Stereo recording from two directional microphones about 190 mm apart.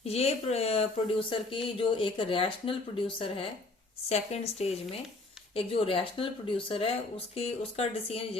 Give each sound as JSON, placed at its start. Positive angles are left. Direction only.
{"t": 0.0, "sound": "speech", "side_deg": 35}